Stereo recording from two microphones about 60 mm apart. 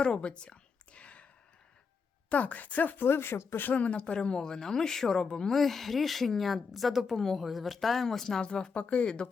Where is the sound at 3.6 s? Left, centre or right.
Left.